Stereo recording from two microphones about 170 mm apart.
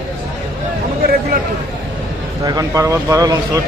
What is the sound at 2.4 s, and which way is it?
Speech, 20° right (ahead or behind).